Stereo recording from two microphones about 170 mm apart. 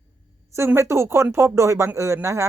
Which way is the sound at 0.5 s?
15° right (ahead or behind).